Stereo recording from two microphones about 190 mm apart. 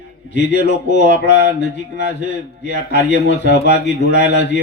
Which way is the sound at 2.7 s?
65° left (ahead or behind).